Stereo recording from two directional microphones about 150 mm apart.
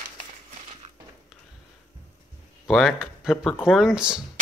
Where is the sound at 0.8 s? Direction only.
45° right (ahead or behind).